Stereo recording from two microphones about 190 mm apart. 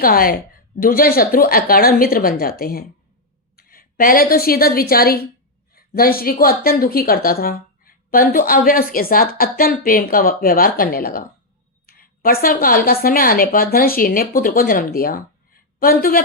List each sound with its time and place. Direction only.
0.0 s a woman's voice: 50° left (ahead or behind)